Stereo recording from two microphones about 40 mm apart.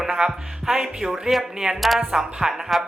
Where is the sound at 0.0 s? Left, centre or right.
Centre.